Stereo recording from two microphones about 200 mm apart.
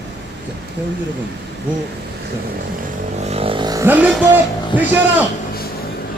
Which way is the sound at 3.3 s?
30° right (ahead or behind).